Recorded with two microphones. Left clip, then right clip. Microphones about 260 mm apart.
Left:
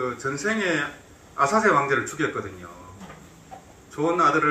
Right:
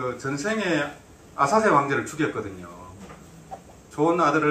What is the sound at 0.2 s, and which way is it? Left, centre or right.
A man's voice, right.